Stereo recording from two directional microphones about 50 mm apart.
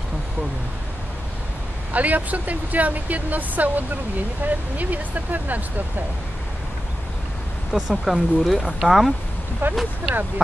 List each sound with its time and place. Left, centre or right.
1.9 s speech: right
7.7 s speech: centre
9.6 s speech: right